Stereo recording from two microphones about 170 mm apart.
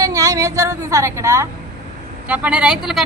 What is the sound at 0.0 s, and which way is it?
A woman's voice, 20° right (ahead or behind).